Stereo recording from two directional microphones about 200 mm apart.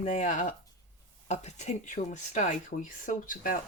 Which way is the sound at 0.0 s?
35° left (ahead or behind).